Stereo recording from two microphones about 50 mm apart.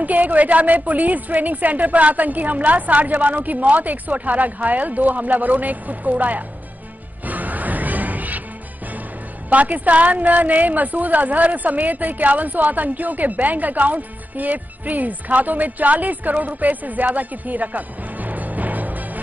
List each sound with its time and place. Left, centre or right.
0.0 s a woman's voice: right
7.2 s music: right
9.5 s a woman's voice: right